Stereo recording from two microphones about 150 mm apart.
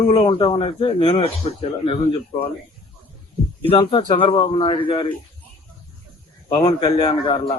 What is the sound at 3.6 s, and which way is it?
A man's voice, 35° left (ahead or behind).